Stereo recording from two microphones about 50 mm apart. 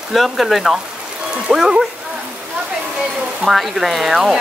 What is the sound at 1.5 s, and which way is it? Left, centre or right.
Speech, centre.